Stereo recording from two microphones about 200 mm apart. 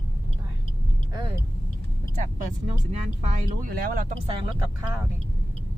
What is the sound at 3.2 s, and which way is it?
Speech, 45° right (ahead or behind).